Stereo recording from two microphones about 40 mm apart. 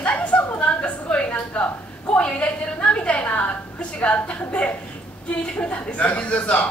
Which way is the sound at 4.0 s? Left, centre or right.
Left.